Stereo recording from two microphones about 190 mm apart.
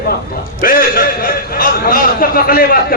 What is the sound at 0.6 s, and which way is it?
Speech, 50° left (ahead or behind).